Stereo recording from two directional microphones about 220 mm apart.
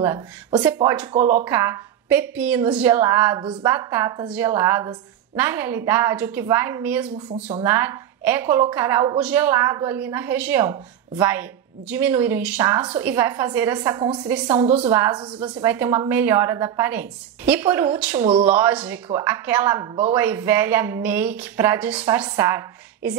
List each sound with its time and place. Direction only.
0.0 s a woman's voice: 10° right (ahead or behind)
1.1 s speech: 35° right (ahead or behind)
1.4 s a woman's voice: 10° right (ahead or behind)
7.2 s speech: 30° right (ahead or behind)
7.6 s a woman's voice: 10° right (ahead or behind)
13.7 s a woman's voice: 20° right (ahead or behind)
15.4 s a woman's voice: 10° right (ahead or behind)
18.1 s a woman's voice: 25° right (ahead or behind)
18.4 s a woman's voice: 5° right (ahead or behind)
22.2 s a woman's voice: 15° right (ahead or behind)